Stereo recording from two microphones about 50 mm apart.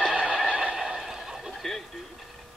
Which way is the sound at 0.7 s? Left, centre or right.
Centre.